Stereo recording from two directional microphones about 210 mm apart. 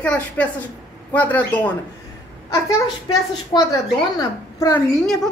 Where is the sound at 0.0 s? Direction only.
5° left (ahead or behind).